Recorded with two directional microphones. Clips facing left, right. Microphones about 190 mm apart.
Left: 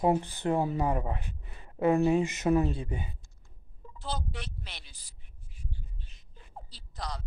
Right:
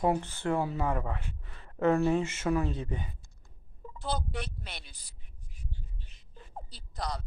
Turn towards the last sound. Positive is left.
turn(degrees=-55)  # may be behind; listen again after turning